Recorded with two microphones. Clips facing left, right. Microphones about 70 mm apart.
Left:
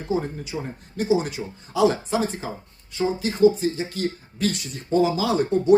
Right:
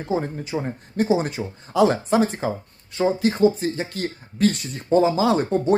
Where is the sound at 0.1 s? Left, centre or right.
Right.